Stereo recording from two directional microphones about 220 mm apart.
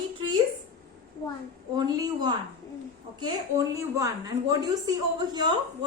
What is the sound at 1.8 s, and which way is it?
Speech, 20° right (ahead or behind).